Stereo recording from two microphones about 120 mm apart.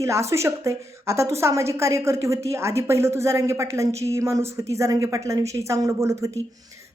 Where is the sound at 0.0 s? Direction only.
25° right (ahead or behind).